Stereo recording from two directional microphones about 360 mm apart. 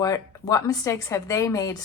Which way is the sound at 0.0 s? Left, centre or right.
Centre.